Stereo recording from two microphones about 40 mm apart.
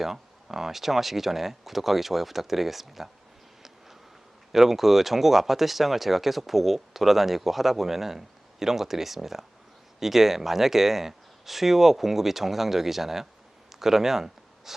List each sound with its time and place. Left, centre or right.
0.0 s speech: centre
4.5 s speech: centre